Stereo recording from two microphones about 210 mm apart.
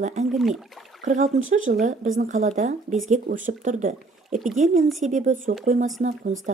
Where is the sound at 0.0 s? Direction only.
35° right (ahead or behind).